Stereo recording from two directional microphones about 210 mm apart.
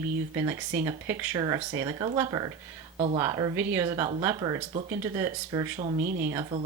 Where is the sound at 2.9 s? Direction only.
30° right (ahead or behind).